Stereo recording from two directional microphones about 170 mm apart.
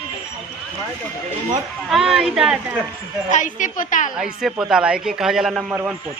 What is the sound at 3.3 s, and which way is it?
Speech, 50° left (ahead or behind).